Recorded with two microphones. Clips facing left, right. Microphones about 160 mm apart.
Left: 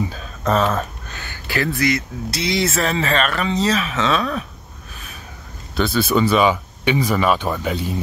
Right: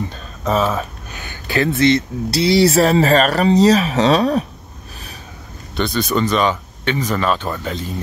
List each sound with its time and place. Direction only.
0.1 s speech: centre (ahead or behind)
1.1 s speech: 20° right (ahead or behind); by 4.5 s 35° right (ahead or behind)
5.8 s speech: 5° left (ahead or behind)